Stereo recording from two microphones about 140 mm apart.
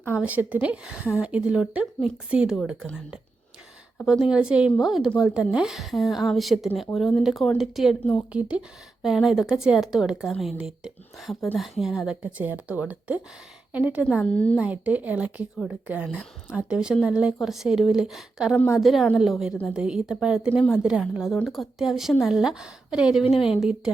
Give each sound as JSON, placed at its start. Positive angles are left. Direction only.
{"t": 0.1, "sound": "a woman's voice", "side_deg": -10}
{"t": 4.0, "sound": "a woman's voice", "side_deg": -5}
{"t": 14.2, "sound": "speech", "side_deg": 10}
{"t": 14.6, "sound": "a woman's voice", "side_deg": -10}